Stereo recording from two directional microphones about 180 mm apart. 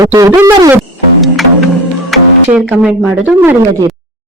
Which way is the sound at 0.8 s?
Centre (ahead or behind).